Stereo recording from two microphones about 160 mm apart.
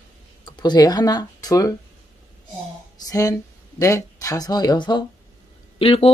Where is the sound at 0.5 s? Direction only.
25° left (ahead or behind).